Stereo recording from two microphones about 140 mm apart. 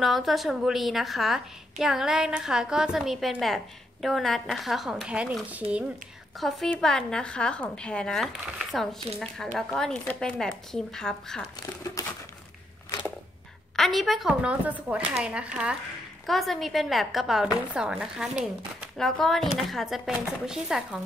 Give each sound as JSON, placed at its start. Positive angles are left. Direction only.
{"t": 0.0, "sound": "a woman's voice", "side_deg": 0}
{"t": 6.4, "sound": "a woman's voice", "side_deg": 5}
{"t": 11.4, "sound": "speech", "side_deg": 25}
{"t": 13.7, "sound": "a woman's voice", "side_deg": 0}